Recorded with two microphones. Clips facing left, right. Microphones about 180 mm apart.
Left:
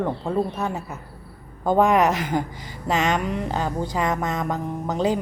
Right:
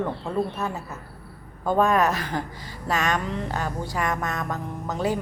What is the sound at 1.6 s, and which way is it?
A woman's voice, 20° left (ahead or behind).